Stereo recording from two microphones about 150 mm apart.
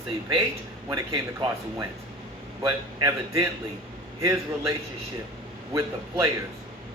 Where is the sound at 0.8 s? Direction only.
25° right (ahead or behind).